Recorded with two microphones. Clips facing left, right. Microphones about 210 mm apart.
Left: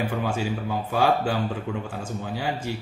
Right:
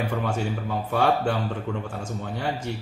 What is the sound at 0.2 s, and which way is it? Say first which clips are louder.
A man's voice: left 1 dB; 5° left (ahead or behind).